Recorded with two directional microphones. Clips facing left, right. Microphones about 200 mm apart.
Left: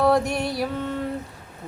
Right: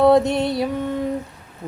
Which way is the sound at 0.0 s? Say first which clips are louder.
Right 5 dB; 20° right (ahead or behind).